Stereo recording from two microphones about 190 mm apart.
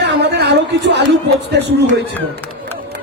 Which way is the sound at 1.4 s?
65° right (ahead or behind).